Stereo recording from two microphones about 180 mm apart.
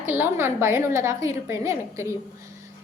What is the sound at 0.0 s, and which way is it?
A woman's voice, 10° right (ahead or behind).